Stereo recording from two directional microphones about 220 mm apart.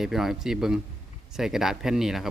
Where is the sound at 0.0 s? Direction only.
Centre (ahead or behind).